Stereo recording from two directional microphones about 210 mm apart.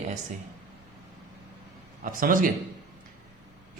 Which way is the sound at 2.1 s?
40° right (ahead or behind).